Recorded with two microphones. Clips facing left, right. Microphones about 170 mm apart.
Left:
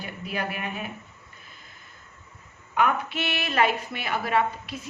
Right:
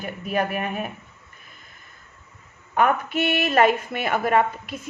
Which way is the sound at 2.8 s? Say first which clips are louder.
Right 4 dB; 45° right (ahead or behind).